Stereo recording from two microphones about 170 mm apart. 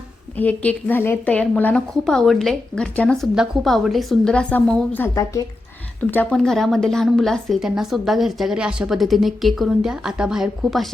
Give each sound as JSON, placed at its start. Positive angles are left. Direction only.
{"t": 0.3, "sound": "a woman's voice", "side_deg": 10}